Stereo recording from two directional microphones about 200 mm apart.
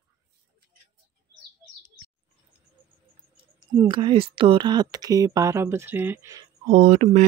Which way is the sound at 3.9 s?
25° right (ahead or behind).